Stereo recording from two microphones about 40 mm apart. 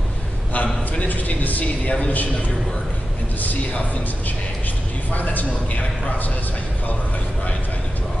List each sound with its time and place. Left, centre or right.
0.5 s a sound: left
3.3 s a man's voice: left
5.1 s a man's voice: left